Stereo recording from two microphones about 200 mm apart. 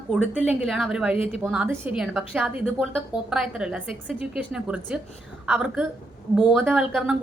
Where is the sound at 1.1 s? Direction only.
30° left (ahead or behind).